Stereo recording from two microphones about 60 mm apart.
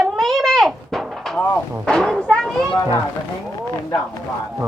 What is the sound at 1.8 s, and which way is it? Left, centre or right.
Speech, centre.